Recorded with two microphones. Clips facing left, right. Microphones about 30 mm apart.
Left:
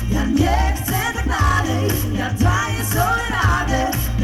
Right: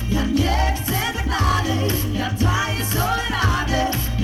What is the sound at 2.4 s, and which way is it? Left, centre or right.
Music, right.